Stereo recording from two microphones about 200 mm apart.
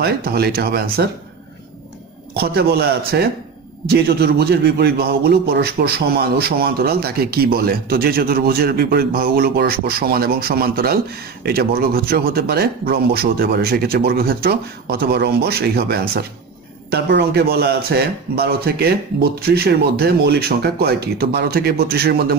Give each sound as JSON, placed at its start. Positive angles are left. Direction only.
{"t": 0.0, "sound": "a man's voice", "side_deg": -50}
{"t": 2.3, "sound": "a man's voice", "side_deg": -50}